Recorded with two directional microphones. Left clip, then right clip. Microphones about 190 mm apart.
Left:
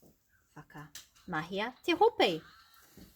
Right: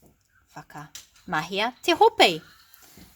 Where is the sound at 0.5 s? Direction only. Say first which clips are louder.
Right 9 dB; 50° right (ahead or behind).